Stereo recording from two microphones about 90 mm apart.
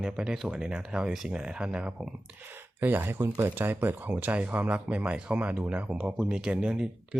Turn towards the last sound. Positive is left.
turn(degrees=-10)  # may be behind; listen again after turning